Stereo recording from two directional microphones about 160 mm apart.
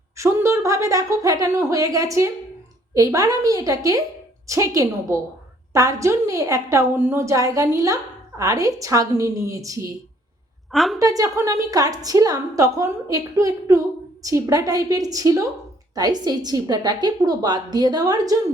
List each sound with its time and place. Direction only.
0.2 s a woman's voice: 20° right (ahead or behind)
10.7 s a woman's voice: centre (ahead or behind)
11.0 s a woman's voice: 20° right (ahead or behind)